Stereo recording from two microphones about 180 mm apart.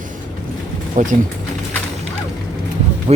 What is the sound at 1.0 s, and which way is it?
Speech, 45° right (ahead or behind).